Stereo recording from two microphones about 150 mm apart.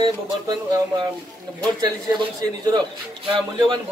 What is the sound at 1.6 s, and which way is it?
A man's voice, 25° right (ahead or behind).